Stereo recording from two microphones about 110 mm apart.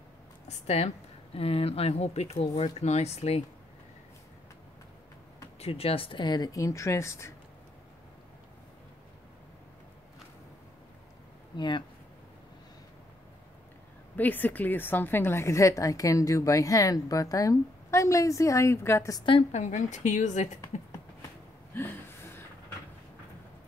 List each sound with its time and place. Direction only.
0.5 s speech: 75° left (ahead or behind)
5.6 s speech: 65° left (ahead or behind); by 7.3 s 25° left (ahead or behind)
11.5 s speech: 45° left (ahead or behind)
14.1 s a woman's voice: 15° left (ahead or behind)
19.5 s a woman's voice: 90° left
21.7 s a sound: 20° left (ahead or behind)